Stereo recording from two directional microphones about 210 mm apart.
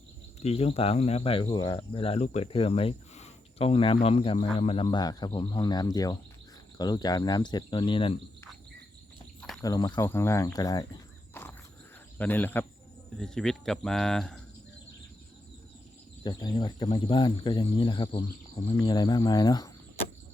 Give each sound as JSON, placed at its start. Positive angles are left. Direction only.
{"t": 0.3, "sound": "speech", "side_deg": 30}
{"t": 9.4, "sound": "cricket", "side_deg": 5}
{"t": 9.6, "sound": "speech", "side_deg": 20}
{"t": 11.3, "sound": "wild animals", "side_deg": 10}
{"t": 12.1, "sound": "speech", "side_deg": 10}
{"t": 16.2, "sound": "speech", "side_deg": 20}